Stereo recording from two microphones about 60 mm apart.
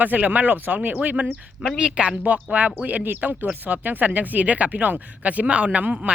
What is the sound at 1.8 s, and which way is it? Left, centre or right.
Speech, centre.